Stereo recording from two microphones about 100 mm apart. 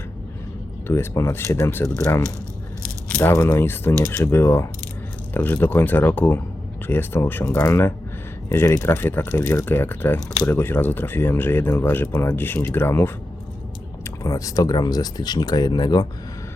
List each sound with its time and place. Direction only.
0.9 s speech: 25° left (ahead or behind)
14.2 s speech: 35° left (ahead or behind)